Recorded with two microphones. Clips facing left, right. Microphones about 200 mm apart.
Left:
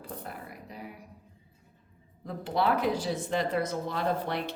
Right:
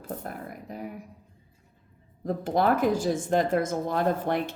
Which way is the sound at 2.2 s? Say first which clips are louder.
Right 4 dB; 45° right (ahead or behind).